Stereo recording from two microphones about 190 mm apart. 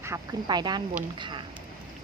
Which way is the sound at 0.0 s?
15° right (ahead or behind).